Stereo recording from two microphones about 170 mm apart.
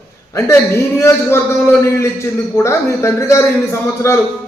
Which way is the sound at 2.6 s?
15° left (ahead or behind).